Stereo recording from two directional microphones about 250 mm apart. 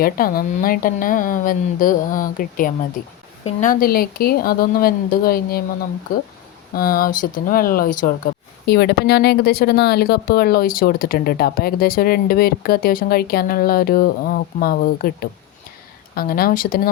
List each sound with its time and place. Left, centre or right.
0.0 s speech: left